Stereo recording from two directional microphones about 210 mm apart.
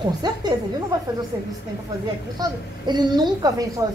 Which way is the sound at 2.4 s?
20° right (ahead or behind).